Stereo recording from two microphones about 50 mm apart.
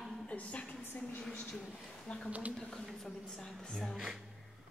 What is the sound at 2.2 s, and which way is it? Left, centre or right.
Speech, right.